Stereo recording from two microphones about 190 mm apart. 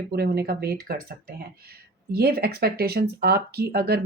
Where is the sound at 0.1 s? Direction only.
55° right (ahead or behind).